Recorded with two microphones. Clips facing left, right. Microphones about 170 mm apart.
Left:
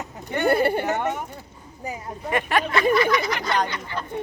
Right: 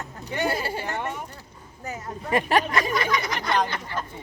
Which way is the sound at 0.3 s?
55° left (ahead or behind).